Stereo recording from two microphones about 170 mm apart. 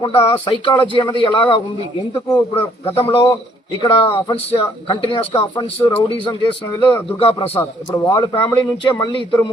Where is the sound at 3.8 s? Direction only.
30° left (ahead or behind).